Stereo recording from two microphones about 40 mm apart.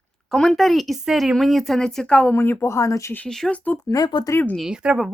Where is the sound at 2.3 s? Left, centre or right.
Left.